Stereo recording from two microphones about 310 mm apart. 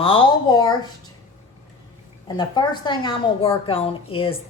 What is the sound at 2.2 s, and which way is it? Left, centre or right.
Speech, centre.